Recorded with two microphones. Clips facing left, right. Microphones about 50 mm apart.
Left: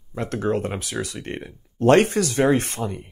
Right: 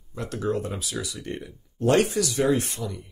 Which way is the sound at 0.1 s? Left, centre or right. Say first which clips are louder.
Left 4 dB; left.